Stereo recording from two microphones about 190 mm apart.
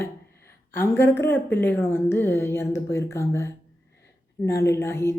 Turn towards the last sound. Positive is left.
turn(degrees=15)  # may be behind; listen again after turning